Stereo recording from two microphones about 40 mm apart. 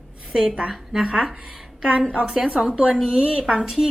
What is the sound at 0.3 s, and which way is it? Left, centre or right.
Speech, right.